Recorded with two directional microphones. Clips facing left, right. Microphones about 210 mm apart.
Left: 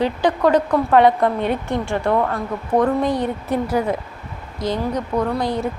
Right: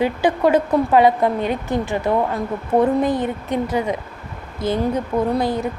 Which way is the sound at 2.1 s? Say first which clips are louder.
Even; 15° right (ahead or behind).